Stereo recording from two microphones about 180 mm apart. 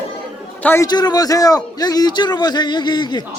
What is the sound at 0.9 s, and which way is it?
Speech, 25° left (ahead or behind).